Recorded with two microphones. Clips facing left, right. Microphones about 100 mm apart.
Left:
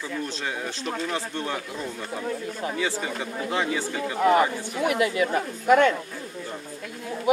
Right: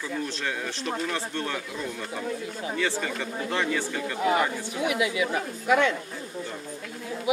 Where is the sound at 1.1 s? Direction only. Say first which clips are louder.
Left 1 dB; 20° left (ahead or behind).